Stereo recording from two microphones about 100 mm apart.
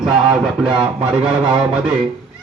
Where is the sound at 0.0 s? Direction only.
5° right (ahead or behind).